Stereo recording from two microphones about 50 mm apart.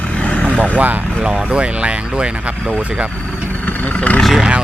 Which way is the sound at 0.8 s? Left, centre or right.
Right.